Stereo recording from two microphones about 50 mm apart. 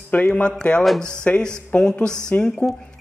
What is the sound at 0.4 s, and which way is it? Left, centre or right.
Speech, left.